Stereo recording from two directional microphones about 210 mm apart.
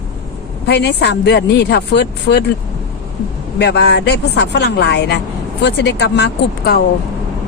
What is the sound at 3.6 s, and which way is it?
Speech, 55° left (ahead or behind).